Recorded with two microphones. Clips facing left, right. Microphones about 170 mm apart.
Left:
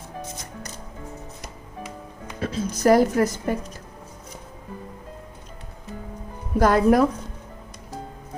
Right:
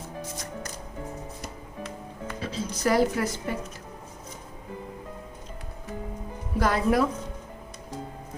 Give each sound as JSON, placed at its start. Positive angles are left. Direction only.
{"t": 2.4, "sound": "speech", "side_deg": 50}
{"t": 6.6, "sound": "speech", "side_deg": 45}